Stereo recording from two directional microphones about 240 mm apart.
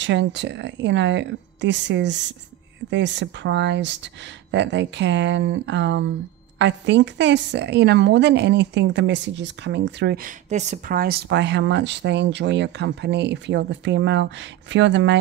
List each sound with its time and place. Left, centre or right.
0.0 s a woman's voice: right